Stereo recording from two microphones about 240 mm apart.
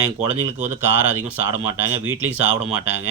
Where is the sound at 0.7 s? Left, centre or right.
Centre.